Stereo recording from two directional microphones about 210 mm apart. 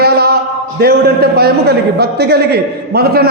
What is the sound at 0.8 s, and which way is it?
A man's voice, 50° right (ahead or behind).